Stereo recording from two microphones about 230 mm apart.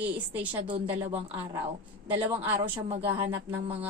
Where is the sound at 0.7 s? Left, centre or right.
Right.